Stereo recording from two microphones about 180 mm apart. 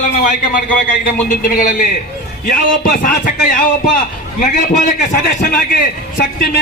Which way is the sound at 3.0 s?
45° left (ahead or behind).